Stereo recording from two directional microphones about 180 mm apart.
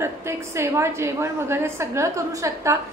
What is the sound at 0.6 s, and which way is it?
A woman's voice, 15° right (ahead or behind).